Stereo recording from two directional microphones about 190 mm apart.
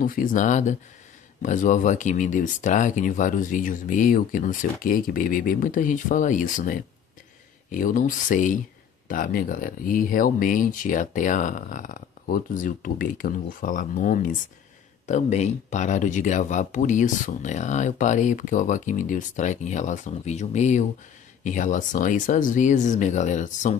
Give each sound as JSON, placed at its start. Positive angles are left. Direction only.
{"t": 0.0, "sound": "speech", "side_deg": 45}